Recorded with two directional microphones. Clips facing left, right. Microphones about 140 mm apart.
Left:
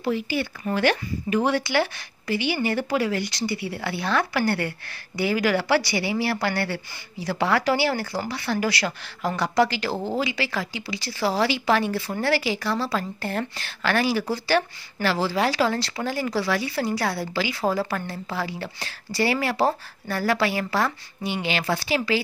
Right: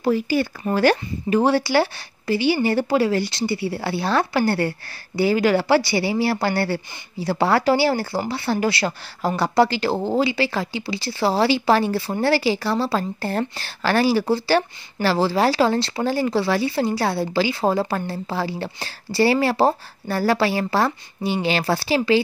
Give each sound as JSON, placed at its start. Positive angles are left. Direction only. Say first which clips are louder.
{"t": 0.0, "sound": "speech", "louder": "right 5 dB", "side_deg": -40}